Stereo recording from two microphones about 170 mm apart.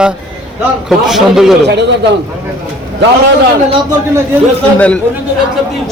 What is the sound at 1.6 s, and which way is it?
Speech, 90° right.